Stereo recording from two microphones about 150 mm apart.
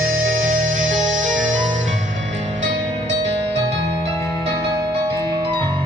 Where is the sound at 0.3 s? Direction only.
60° right (ahead or behind).